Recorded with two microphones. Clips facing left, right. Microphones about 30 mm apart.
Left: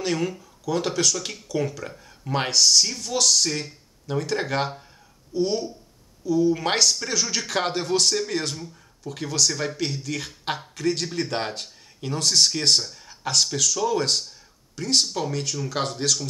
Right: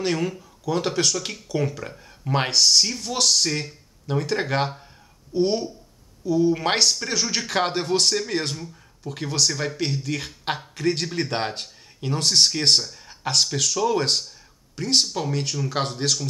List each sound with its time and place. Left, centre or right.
0.0 s speech: centre
5.3 s speech: right; by 10.7 s centre
10.8 s speech: centre
13.1 s speech: centre